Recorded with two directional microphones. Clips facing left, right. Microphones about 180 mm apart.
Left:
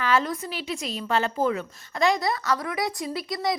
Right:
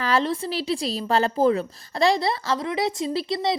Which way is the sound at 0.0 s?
35° right (ahead or behind).